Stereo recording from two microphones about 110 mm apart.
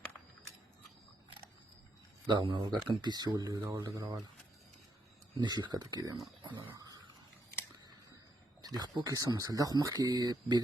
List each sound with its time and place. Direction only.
2.2 s speech: 45° right (ahead or behind); by 4.2 s 30° right (ahead or behind)
5.4 s speech: 40° right (ahead or behind)
6.7 s a sound: 35° right (ahead or behind)
8.6 s speech: 35° right (ahead or behind)